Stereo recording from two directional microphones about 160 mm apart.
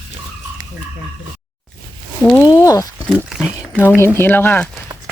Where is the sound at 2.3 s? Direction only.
25° left (ahead or behind).